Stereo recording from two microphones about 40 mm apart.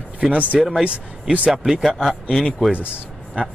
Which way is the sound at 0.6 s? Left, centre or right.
Centre.